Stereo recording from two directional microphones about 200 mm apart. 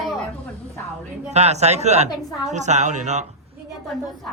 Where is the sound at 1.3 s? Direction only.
35° right (ahead or behind).